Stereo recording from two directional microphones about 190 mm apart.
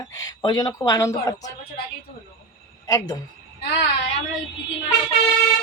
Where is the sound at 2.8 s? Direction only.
20° left (ahead or behind).